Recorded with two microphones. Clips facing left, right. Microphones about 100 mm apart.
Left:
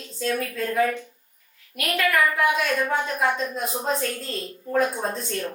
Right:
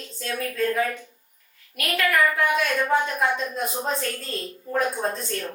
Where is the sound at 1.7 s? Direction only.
Centre (ahead or behind).